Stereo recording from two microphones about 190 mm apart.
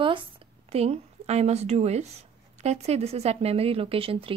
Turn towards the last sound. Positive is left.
turn(degrees=-30)  # may be behind; listen again after turning